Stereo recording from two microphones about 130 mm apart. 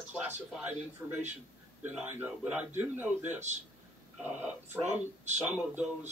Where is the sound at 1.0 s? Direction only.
10° right (ahead or behind).